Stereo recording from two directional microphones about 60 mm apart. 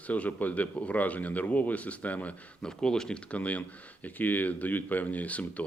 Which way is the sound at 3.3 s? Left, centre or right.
Left.